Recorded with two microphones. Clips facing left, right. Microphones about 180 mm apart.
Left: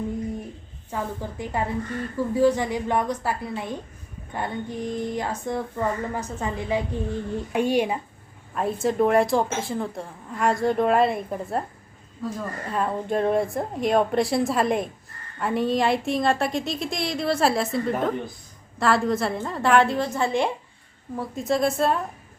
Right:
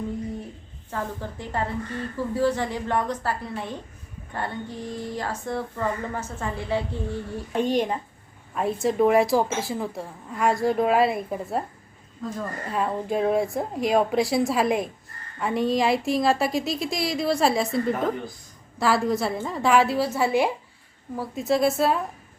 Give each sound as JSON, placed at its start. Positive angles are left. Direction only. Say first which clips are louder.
{"t": 0.9, "sound": "speech", "louder": "left 1 dB", "side_deg": 15}
{"t": 8.5, "sound": "a woman's voice", "louder": "even", "side_deg": 0}